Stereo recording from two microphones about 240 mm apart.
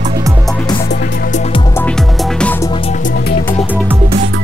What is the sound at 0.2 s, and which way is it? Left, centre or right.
Music, centre.